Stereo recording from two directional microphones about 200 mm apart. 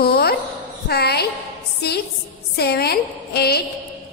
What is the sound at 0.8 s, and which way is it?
A woman's voice, 50° left (ahead or behind).